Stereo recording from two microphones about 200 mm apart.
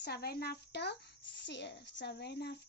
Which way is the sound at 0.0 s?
50° left (ahead or behind).